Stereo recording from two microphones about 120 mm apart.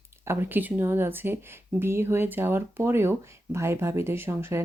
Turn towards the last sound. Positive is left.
turn(degrees=-20)  # may be behind; listen again after turning